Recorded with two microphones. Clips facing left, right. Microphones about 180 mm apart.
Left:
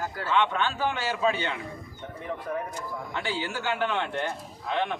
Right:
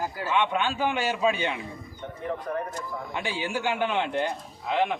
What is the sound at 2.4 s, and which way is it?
Speech, 5° left (ahead or behind).